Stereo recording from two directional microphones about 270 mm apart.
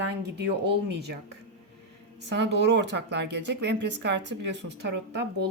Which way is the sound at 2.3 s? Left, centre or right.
Right.